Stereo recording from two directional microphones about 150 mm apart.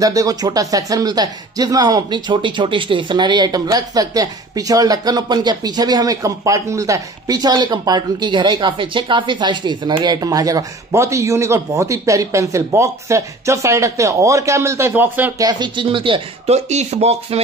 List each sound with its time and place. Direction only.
0.0 s speech: 25° right (ahead or behind)
15.3 s speech: 30° right (ahead or behind); by 17.4 s 45° right (ahead or behind)